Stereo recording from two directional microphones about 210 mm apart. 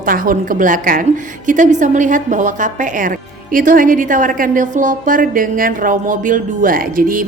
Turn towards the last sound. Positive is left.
turn(degrees=-40)  # may be behind; listen again after turning